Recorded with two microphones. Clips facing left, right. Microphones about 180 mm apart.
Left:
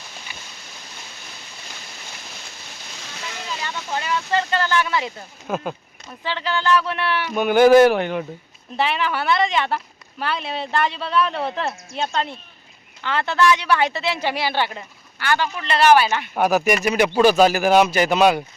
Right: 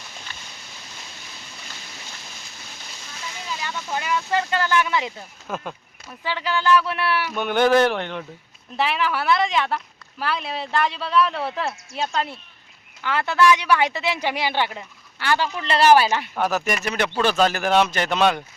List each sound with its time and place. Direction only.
3.9 s speech: 10° right (ahead or behind)
5.5 s speech: 10° left (ahead or behind)
6.1 s speech: 10° right (ahead or behind)
7.3 s speech: 5° left (ahead or behind); by 14.8 s 15° right (ahead or behind)
15.2 s speech: 30° right (ahead or behind)
16.3 s speech: 15° left (ahead or behind)